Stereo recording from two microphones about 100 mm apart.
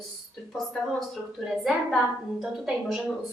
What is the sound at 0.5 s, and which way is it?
A woman's voice, centre (ahead or behind).